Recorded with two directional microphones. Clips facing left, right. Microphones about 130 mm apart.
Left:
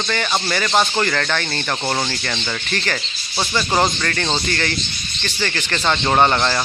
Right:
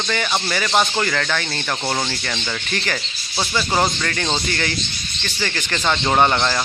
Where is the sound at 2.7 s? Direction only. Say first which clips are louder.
Left 1 dB; 10° right (ahead or behind).